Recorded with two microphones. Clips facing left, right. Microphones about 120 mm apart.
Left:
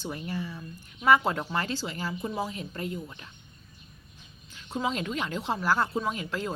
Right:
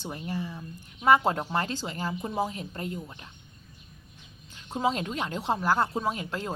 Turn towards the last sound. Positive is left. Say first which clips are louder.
# even
turn(degrees=-35)  # may be behind; listen again after turning